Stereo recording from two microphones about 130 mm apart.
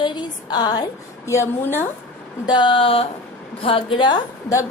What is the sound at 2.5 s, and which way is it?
A woman's voice, 35° left (ahead or behind).